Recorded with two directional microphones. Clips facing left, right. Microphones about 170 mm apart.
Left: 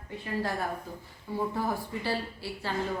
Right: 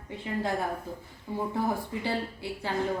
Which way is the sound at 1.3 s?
15° right (ahead or behind).